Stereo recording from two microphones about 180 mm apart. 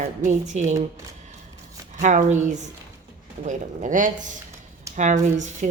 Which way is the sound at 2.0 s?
45° right (ahead or behind).